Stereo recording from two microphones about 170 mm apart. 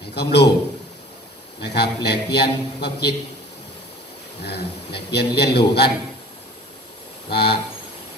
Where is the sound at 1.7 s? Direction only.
75° left (ahead or behind).